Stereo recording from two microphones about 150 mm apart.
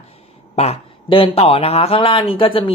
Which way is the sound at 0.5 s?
45° left (ahead or behind).